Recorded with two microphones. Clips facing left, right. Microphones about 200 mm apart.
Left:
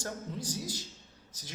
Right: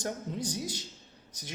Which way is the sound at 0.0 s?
20° right (ahead or behind).